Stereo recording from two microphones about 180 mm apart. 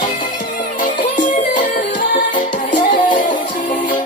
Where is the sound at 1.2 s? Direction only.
45° left (ahead or behind).